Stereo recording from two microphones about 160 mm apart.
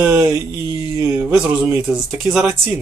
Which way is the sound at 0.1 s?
25° right (ahead or behind).